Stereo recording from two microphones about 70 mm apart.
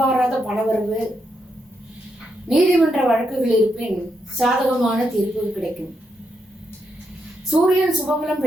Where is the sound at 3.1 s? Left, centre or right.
Centre.